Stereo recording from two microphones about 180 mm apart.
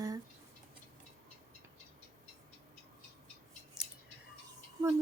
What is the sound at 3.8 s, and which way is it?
Scissors, 5° right (ahead or behind).